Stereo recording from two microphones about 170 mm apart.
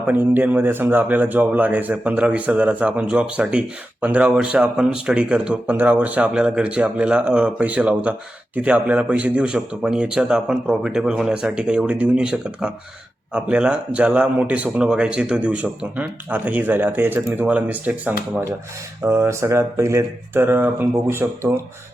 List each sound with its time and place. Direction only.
0.1 s a man's voice: 10° right (ahead or behind)